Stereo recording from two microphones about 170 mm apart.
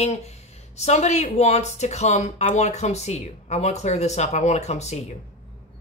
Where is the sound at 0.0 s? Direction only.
40° left (ahead or behind).